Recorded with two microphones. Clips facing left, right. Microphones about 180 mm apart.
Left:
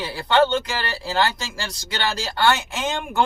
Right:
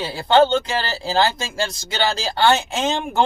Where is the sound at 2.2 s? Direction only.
25° right (ahead or behind).